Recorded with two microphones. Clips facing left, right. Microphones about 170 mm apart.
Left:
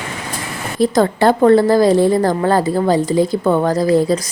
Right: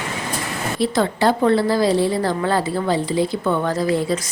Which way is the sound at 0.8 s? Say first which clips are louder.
Left 6 dB; 45° left (ahead or behind).